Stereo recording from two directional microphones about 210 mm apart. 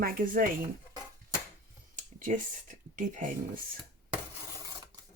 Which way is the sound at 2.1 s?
40° right (ahead or behind).